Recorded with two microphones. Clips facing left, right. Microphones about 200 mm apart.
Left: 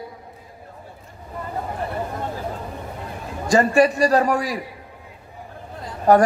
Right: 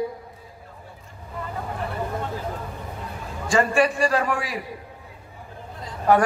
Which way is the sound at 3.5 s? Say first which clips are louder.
Left 4 dB; 40° left (ahead or behind).